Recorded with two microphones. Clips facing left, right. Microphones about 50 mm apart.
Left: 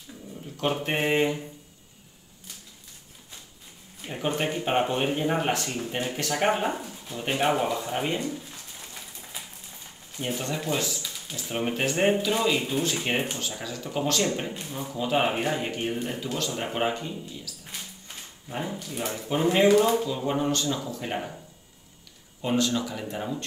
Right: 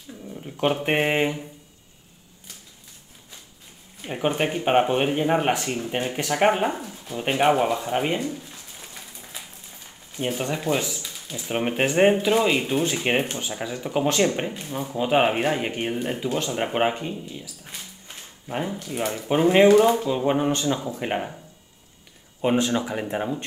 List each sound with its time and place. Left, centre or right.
0.3 s dog: right
0.8 s speech: right
4.0 s speech: right
8.5 s a sound: centre
10.1 s speech: centre
18.0 s a sound: right
18.7 s speech: right
22.4 s speech: right